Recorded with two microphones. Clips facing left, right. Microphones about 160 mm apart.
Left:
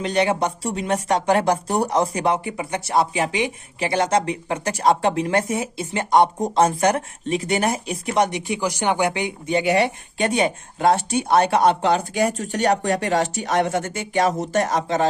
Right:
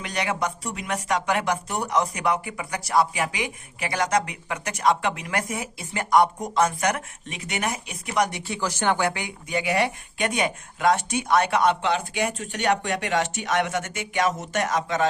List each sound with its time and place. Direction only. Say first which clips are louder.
0.0 s speech: left 7 dB; 30° left (ahead or behind)